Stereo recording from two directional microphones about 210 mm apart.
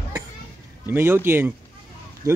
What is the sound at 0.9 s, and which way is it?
Speech, 10° right (ahead or behind).